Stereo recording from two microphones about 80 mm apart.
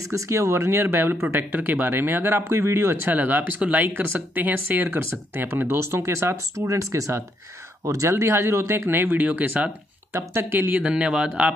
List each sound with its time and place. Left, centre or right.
0.1 s speech: right
3.1 s speech: right
10.8 s a man's voice: centre